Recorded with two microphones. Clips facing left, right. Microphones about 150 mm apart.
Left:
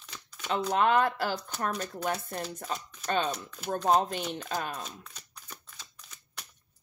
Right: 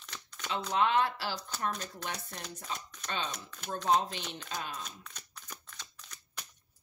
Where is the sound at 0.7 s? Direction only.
50° left (ahead or behind).